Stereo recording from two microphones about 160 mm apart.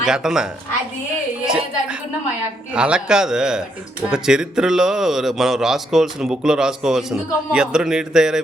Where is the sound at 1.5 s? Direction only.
5° right (ahead or behind).